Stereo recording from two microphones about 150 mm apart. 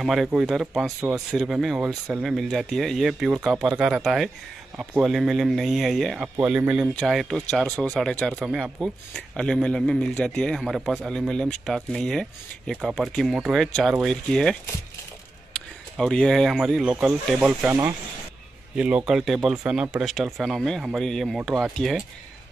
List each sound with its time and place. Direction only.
0.0 s speech: centre (ahead or behind)
17.6 s speech: 15° right (ahead or behind)
18.8 s speech: 5° right (ahead or behind)